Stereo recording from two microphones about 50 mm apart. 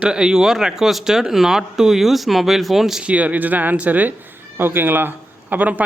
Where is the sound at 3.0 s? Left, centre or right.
Right.